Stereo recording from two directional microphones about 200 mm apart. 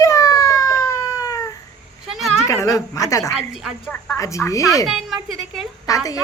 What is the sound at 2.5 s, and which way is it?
Speech, 15° left (ahead or behind).